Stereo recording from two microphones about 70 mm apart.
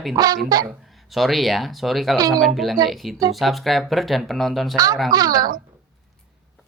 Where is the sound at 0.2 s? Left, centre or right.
Right.